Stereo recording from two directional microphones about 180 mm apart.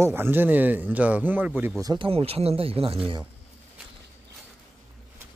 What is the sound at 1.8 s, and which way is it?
Speech, 25° right (ahead or behind).